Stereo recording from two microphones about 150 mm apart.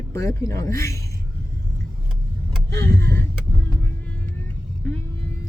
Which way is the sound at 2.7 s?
20° left (ahead or behind).